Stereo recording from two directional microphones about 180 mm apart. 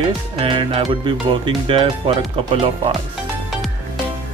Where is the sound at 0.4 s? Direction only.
30° right (ahead or behind).